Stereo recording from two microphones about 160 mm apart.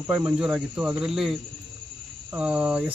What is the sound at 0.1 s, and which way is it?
Speech, 5° right (ahead or behind).